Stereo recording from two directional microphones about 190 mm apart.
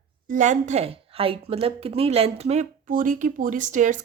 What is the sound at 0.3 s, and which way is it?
A woman's voice, 40° right (ahead or behind).